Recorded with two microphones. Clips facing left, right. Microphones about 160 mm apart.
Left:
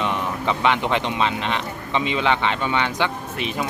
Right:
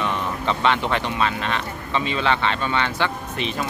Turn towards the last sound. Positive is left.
turn(degrees=10)  # may be behind; listen again after turning